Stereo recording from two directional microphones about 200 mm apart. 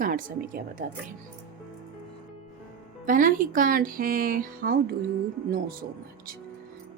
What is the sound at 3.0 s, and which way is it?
Speech, 40° right (ahead or behind).